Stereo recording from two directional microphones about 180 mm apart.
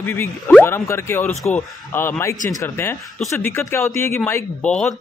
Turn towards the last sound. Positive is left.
turn(degrees=5)  # may be behind; listen again after turning